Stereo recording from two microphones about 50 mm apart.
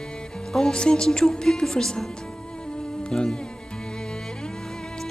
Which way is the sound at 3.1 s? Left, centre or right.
Centre.